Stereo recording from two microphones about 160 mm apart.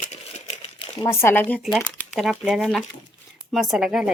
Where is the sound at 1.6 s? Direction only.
5° right (ahead or behind).